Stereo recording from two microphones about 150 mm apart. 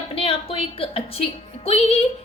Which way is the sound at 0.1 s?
35° left (ahead or behind).